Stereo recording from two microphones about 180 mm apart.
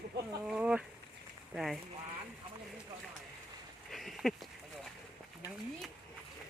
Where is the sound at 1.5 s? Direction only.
Centre (ahead or behind).